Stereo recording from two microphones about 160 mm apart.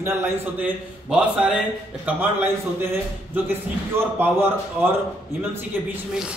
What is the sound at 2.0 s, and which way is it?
A man's voice, 15° right (ahead or behind).